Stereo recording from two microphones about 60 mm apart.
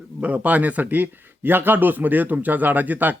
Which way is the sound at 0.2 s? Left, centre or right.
Right.